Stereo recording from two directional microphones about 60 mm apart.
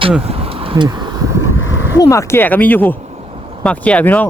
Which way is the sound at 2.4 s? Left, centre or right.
Left.